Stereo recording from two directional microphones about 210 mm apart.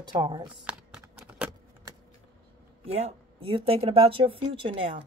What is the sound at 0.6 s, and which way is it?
Typing, 5° right (ahead or behind).